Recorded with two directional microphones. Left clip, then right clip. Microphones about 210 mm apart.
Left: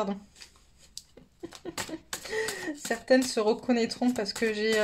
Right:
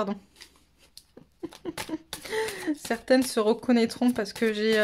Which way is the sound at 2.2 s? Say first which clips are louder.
Right 3 dB; 30° right (ahead or behind).